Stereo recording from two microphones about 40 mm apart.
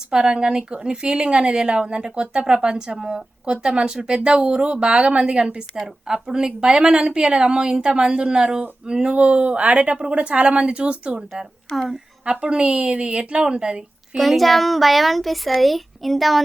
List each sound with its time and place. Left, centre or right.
0.1 s speech: centre
12.2 s speech: right
14.2 s speech: centre